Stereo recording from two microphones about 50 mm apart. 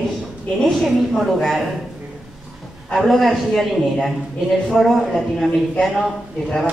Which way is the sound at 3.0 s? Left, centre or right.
Centre.